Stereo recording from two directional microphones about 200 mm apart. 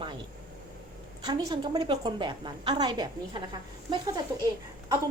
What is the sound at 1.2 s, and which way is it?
Speech, 20° right (ahead or behind).